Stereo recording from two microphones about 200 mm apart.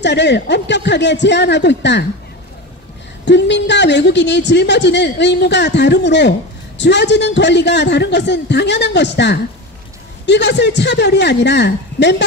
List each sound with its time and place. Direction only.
0.0 s a woman's voice: 60° left (ahead or behind)
3.3 s a woman's voice: 60° left (ahead or behind)